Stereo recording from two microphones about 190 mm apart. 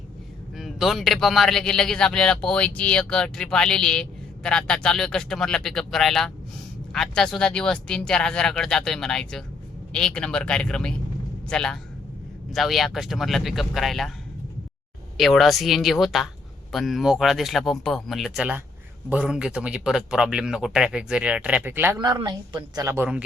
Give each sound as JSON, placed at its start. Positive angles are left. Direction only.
{"t": 0.5, "sound": "speech", "side_deg": 0}
{"t": 15.2, "sound": "speech", "side_deg": 0}
{"t": 21.9, "sound": "a woman's voice", "side_deg": -20}